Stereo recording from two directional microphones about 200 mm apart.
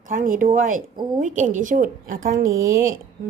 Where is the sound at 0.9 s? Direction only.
20° right (ahead or behind).